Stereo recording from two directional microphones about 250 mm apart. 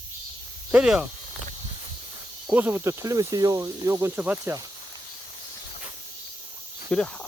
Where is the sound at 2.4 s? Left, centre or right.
Centre.